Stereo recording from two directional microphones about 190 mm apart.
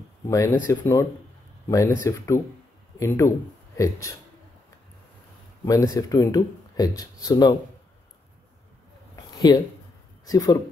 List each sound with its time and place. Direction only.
0.3 s speech: 15° left (ahead or behind)
5.7 s speech: 15° left (ahead or behind)
9.1 s a sound: 20° left (ahead or behind)
10.2 s speech: 20° left (ahead or behind)